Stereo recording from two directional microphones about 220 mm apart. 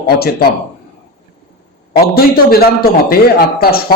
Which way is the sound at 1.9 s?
45° left (ahead or behind).